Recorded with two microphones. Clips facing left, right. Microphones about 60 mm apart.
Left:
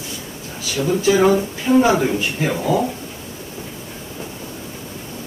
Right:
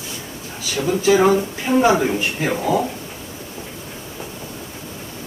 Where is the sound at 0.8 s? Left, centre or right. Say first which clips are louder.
Even; right.